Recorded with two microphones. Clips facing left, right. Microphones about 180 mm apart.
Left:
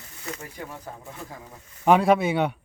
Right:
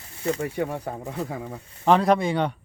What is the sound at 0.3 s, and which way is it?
Speech, 70° right (ahead or behind).